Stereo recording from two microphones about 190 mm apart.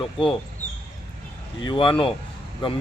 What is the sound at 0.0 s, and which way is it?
Speech, 25° left (ahead or behind).